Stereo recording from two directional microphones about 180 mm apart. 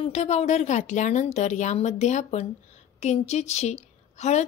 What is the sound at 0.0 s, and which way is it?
A woman's voice, 40° left (ahead or behind).